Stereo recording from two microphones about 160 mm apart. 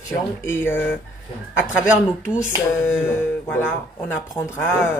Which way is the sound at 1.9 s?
5° right (ahead or behind).